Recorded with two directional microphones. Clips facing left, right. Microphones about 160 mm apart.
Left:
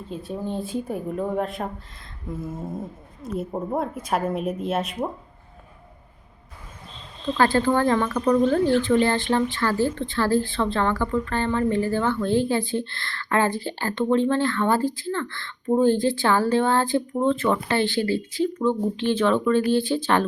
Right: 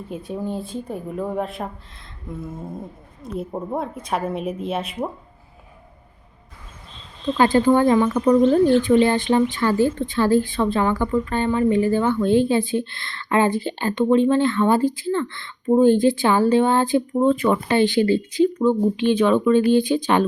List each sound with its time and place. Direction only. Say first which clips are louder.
0.3 s a woman's voice: right 2 dB; 10° right (ahead or behind)
0.6 s speech: left 2 dB; 5° left (ahead or behind)
7.3 s a woman's voice: right 4 dB; 20° right (ahead or behind)